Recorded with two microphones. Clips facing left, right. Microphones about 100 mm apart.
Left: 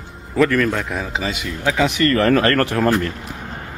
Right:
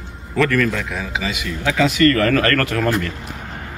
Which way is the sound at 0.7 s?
35° left (ahead or behind).